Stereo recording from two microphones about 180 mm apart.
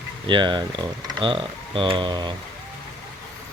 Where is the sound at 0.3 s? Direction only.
25° right (ahead or behind).